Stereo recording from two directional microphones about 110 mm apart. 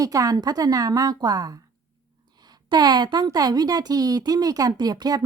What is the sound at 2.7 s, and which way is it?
Speech, 40° right (ahead or behind).